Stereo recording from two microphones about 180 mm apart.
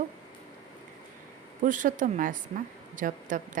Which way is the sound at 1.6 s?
45° right (ahead or behind).